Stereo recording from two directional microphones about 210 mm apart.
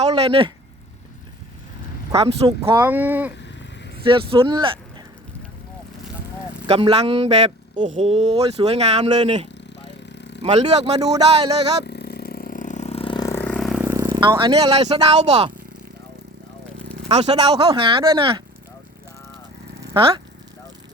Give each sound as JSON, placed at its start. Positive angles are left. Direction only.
{"t": 0.0, "sound": "a sound", "side_deg": -25}
{"t": 2.6, "sound": "speech", "side_deg": -15}
{"t": 4.0, "sound": "speech", "side_deg": -25}
{"t": 6.7, "sound": "speech", "side_deg": -25}
{"t": 10.1, "sound": "a sound", "side_deg": 55}
{"t": 10.4, "sound": "speech", "side_deg": -30}
{"t": 10.9, "sound": "speech", "side_deg": -20}
{"t": 11.9, "sound": "vehicle", "side_deg": 50}
{"t": 17.1, "sound": "speech", "side_deg": -30}
{"t": 19.8, "sound": "a sound", "side_deg": -15}